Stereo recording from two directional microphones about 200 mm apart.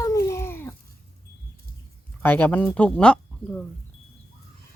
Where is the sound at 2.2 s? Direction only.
10° left (ahead or behind).